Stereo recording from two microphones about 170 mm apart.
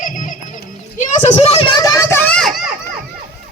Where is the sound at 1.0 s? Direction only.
45° left (ahead or behind); by 2.6 s 5° left (ahead or behind).